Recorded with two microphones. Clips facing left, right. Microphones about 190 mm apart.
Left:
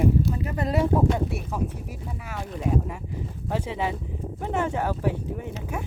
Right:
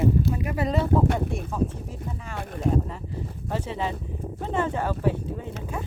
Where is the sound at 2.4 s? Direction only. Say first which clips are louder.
Left 1 dB; 55° right (ahead or behind).